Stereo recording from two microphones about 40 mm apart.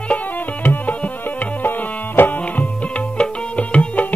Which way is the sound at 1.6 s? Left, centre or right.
Left.